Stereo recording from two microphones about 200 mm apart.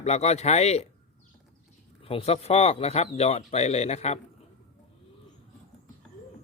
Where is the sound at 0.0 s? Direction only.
35° left (ahead or behind).